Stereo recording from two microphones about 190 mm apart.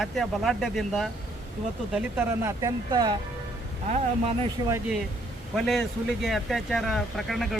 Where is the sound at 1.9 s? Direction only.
15° right (ahead or behind).